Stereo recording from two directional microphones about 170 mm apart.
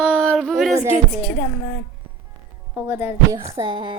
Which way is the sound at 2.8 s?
15° right (ahead or behind).